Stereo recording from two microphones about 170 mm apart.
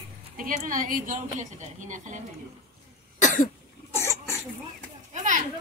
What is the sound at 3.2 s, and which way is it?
Cough, 45° left (ahead or behind).